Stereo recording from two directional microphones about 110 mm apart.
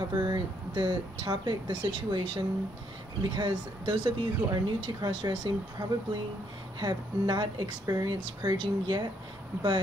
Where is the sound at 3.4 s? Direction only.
45° right (ahead or behind).